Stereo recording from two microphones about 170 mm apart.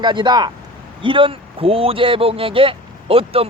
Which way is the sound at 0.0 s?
25° right (ahead or behind).